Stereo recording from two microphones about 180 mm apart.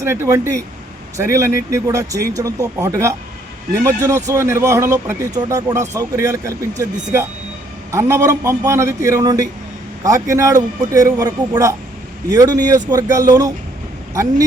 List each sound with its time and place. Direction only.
0.0 s a man's voice: 15° right (ahead or behind)